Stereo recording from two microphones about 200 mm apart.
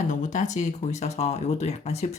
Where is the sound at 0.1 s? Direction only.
40° left (ahead or behind).